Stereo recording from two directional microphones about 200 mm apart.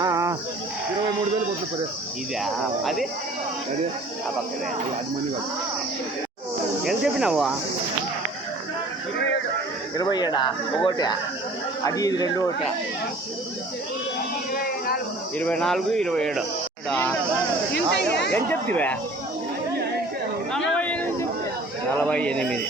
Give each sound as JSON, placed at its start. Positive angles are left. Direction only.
{"t": 0.0, "sound": "livestock", "side_deg": -15}
{"t": 2.4, "sound": "speech", "side_deg": 0}
{"t": 6.8, "sound": "speech", "side_deg": -5}
{"t": 10.0, "sound": "speech", "side_deg": 20}
{"t": 14.6, "sound": "a sound", "side_deg": 50}
{"t": 15.4, "sound": "speech", "side_deg": 5}
{"t": 17.7, "sound": "speech", "side_deg": 55}
{"t": 18.3, "sound": "speech", "side_deg": 10}
{"t": 20.7, "sound": "a sound", "side_deg": 5}
{"t": 22.0, "sound": "speech", "side_deg": 5}